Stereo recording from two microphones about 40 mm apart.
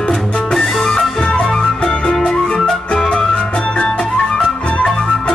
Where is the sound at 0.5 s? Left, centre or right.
Centre.